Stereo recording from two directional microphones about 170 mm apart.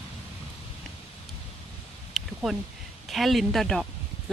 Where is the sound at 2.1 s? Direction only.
Centre (ahead or behind).